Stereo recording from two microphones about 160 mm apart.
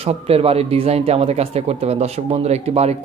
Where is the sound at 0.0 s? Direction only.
40° right (ahead or behind).